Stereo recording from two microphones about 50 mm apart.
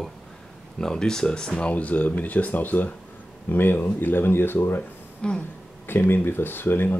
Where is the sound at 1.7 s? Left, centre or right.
Left.